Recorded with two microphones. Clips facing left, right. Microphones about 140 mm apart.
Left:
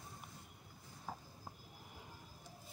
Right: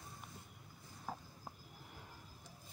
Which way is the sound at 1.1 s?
90° right.